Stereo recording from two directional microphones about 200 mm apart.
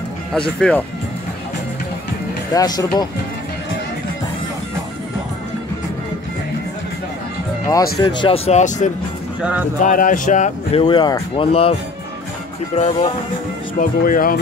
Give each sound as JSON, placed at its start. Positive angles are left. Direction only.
{"t": 0.3, "sound": "speech", "side_deg": 5}
{"t": 2.5, "sound": "speech", "side_deg": 20}
{"t": 8.2, "sound": "speech", "side_deg": 30}
{"t": 9.4, "sound": "speech", "side_deg": -5}
{"t": 9.8, "sound": "speech", "side_deg": 40}
{"t": 12.7, "sound": "speech", "side_deg": 30}
{"t": 13.7, "sound": "speech", "side_deg": 45}